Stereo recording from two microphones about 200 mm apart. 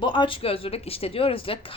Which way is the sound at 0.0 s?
25° left (ahead or behind).